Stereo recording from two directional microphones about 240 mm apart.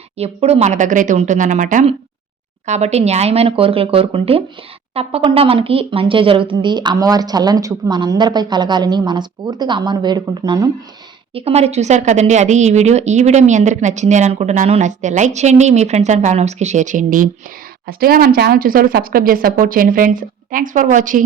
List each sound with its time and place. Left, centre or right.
0.2 s speech: right